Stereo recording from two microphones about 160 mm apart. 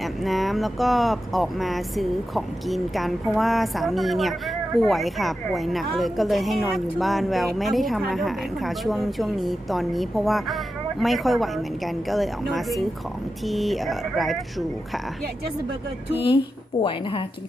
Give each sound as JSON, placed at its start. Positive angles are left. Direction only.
{"t": 0.0, "sound": "speech", "side_deg": 0}
{"t": 16.8, "sound": "a woman's voice", "side_deg": 35}